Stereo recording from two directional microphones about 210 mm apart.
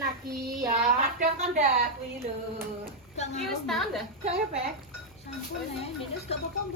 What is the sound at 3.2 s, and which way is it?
Speech, 30° left (ahead or behind).